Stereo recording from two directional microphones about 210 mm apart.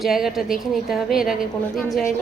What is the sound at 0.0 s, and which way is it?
A woman's voice, centre (ahead or behind).